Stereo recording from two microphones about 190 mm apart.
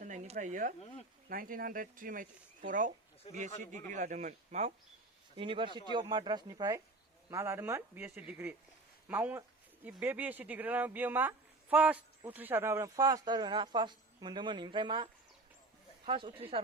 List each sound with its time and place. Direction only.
0.0 s a sound: 40° right (ahead or behind)
1.3 s speech: 50° right (ahead or behind)
3.9 s speech: 40° right (ahead or behind)
5.4 s speech: 25° right (ahead or behind)